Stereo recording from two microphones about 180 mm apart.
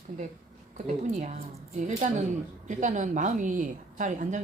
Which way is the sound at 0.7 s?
40° right (ahead or behind).